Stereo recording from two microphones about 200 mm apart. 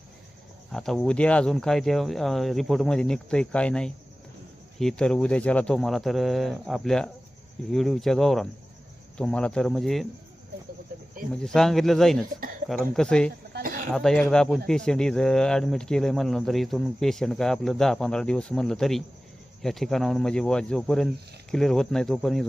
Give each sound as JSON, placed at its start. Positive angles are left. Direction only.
{"t": 0.7, "sound": "speech", "side_deg": 0}
{"t": 11.4, "sound": "speech", "side_deg": 0}
{"t": 13.5, "sound": "a sound", "side_deg": -45}
{"t": 13.9, "sound": "speech", "side_deg": 0}